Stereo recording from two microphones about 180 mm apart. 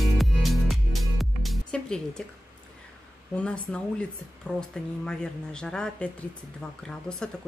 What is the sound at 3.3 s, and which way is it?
Speech, 5° left (ahead or behind).